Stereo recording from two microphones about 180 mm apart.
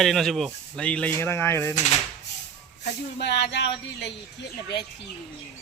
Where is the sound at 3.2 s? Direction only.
70° left (ahead or behind).